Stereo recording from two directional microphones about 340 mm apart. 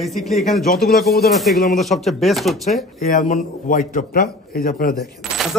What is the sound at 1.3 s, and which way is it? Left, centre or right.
A man's voice, centre.